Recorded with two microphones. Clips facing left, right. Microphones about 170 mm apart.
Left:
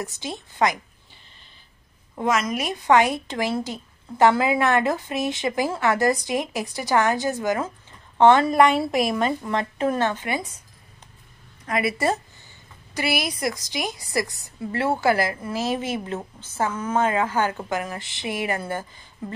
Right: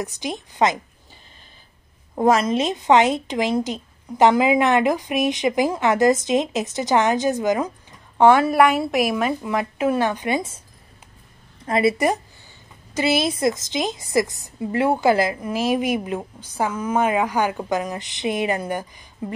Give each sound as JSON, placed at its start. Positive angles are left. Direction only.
{"t": 0.0, "sound": "a woman's voice", "side_deg": -15}
{"t": 2.1, "sound": "a woman's voice", "side_deg": -35}
{"t": 11.6, "sound": "a woman's voice", "side_deg": -30}
{"t": 12.9, "sound": "a woman's voice", "side_deg": -20}